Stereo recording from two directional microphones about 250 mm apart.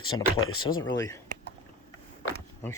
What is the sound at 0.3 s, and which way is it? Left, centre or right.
Speech, left.